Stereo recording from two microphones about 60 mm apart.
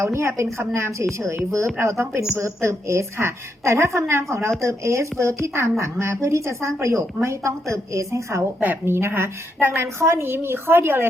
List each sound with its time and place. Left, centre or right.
0.0 s a woman's voice: right
8.8 s a woman's voice: right